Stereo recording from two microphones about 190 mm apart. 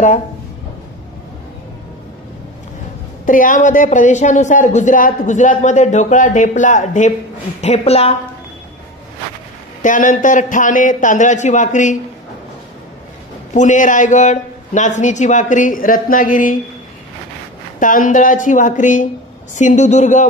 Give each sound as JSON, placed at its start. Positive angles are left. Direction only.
{"t": 3.3, "sound": "speech", "side_deg": 45}
{"t": 9.8, "sound": "speech", "side_deg": 45}
{"t": 13.5, "sound": "speech", "side_deg": 40}
{"t": 17.7, "sound": "speech", "side_deg": 45}